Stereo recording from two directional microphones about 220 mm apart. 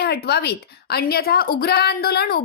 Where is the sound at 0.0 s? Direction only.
45° left (ahead or behind).